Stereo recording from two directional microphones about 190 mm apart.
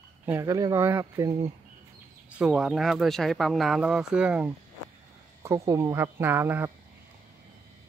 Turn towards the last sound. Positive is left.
turn(degrees=-10)  # may be behind; listen again after turning